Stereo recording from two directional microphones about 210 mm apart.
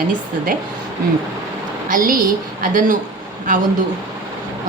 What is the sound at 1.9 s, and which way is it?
Speech, 40° right (ahead or behind).